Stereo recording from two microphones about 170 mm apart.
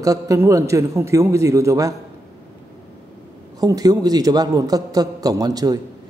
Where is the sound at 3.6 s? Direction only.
20° right (ahead or behind).